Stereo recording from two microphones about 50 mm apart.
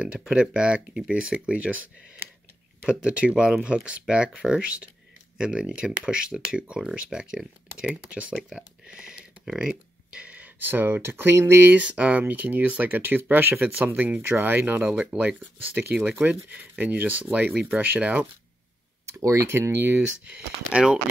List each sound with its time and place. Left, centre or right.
0.4 s speech: centre
2.9 s speech: right
7.7 s speech: right
8.3 s speech: centre
9.5 s a sound: centre; by 10.7 s right
10.7 s speech: right
11.7 s speech: right
14.9 s speech: centre
15.1 s speech: right
19.0 s speech: right
19.7 s speech: right
20.2 s speech: right